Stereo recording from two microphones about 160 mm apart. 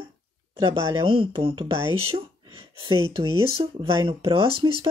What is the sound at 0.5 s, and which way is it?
Speech, 30° right (ahead or behind).